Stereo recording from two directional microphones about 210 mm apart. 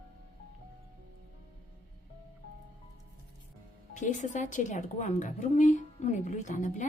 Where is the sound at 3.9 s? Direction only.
35° left (ahead or behind).